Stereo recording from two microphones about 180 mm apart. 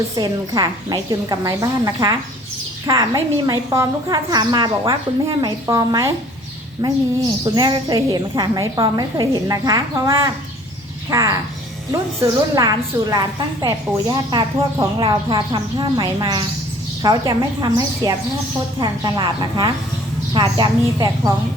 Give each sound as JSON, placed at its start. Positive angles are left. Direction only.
{"t": 0.2, "sound": "a woman's voice", "side_deg": -20}